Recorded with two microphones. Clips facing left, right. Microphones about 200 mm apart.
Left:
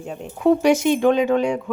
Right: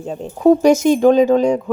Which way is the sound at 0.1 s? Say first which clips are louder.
Right 5 dB; 35° right (ahead or behind).